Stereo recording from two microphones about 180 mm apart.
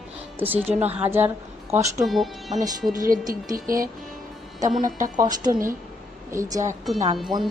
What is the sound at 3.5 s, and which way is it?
Speech, 50° right (ahead or behind).